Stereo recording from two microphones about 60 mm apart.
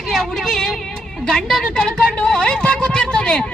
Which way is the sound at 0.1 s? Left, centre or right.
Centre.